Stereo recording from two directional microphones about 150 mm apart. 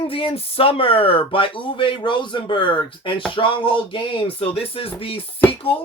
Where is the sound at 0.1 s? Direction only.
40° left (ahead or behind).